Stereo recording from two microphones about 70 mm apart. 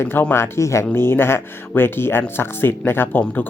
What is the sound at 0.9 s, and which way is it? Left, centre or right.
Speech, left.